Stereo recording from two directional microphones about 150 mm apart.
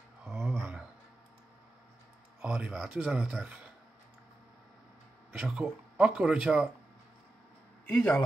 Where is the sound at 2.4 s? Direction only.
10° right (ahead or behind).